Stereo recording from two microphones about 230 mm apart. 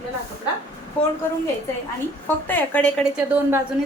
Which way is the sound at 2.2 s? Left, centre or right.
Centre.